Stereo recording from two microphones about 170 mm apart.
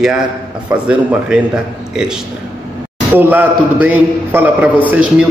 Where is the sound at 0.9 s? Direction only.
5° right (ahead or behind).